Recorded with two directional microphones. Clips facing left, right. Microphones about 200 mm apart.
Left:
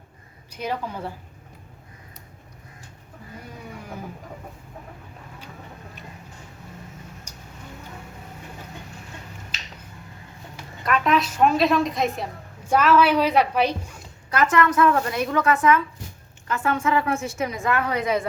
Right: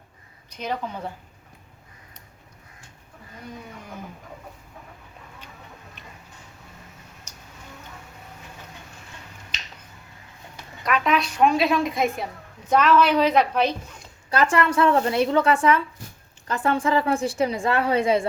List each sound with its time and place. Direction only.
0.5 s a woman's voice: 10° left (ahead or behind)
10.8 s a woman's voice: centre (ahead or behind)
14.3 s a woman's voice: 30° right (ahead or behind)